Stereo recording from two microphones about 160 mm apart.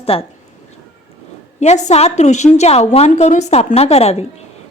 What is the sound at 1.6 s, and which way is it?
A woman's voice, 45° left (ahead or behind).